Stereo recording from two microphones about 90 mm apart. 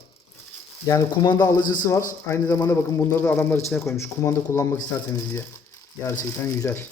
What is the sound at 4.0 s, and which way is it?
Speech, 30° left (ahead or behind).